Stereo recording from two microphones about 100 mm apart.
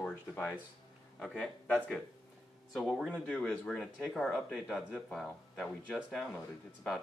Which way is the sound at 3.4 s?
10° left (ahead or behind).